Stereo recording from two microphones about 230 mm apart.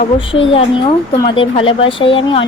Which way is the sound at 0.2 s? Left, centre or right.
Left.